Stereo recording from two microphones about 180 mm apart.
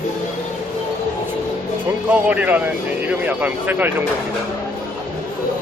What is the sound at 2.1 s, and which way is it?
Speech, 10° right (ahead or behind).